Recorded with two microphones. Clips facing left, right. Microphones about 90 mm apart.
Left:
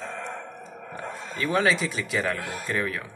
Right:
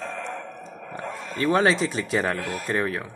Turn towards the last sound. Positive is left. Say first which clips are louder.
# right 3 dB
turn(degrees=-30)  # may be behind; listen again after turning